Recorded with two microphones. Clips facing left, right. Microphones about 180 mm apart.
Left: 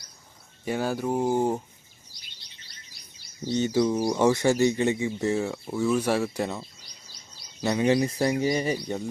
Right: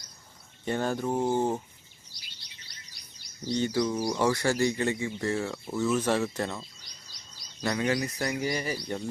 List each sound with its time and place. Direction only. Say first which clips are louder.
0.6 s speech: left 2 dB; 10° left (ahead or behind)
3.6 s speech: left 4 dB; 20° left (ahead or behind)